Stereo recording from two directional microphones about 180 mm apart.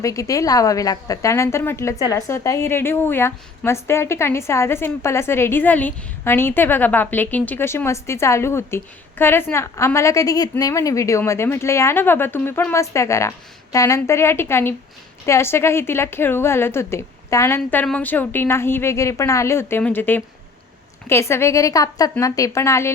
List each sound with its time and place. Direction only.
0.0 s a woman's voice: 15° left (ahead or behind)